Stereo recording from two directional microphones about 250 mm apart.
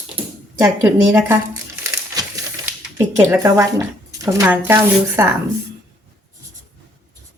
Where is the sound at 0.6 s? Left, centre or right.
Centre.